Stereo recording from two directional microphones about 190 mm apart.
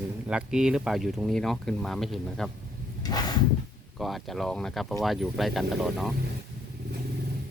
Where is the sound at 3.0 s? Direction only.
20° left (ahead or behind).